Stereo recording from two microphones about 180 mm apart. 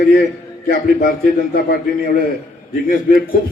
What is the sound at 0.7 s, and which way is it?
A man's voice, 55° left (ahead or behind).